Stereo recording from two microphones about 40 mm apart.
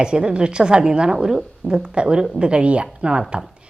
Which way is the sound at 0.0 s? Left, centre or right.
Right.